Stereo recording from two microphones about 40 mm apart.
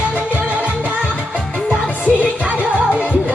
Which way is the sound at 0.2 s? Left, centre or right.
Right.